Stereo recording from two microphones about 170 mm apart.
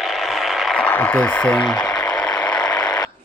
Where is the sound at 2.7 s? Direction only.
25° left (ahead or behind).